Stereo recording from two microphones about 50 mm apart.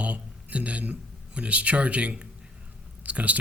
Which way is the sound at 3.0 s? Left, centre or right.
Right.